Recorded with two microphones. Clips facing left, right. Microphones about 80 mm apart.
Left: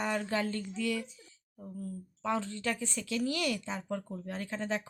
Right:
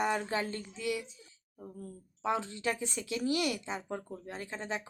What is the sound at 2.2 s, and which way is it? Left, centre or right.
Speech, centre.